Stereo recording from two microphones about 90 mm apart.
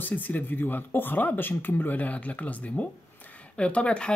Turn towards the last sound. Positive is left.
turn(degrees=10)  # may be behind; listen again after turning